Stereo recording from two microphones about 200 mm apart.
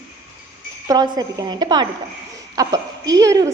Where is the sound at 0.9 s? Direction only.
20° right (ahead or behind).